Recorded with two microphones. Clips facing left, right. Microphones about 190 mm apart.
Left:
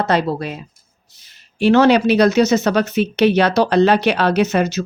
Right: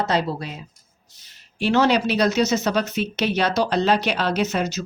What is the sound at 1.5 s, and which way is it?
Speech, 60° left (ahead or behind).